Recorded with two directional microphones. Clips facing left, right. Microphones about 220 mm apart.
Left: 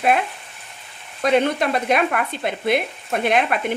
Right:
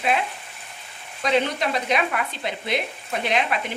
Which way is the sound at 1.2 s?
55° left (ahead or behind).